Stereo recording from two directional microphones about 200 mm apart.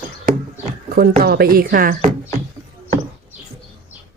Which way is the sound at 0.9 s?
50° right (ahead or behind).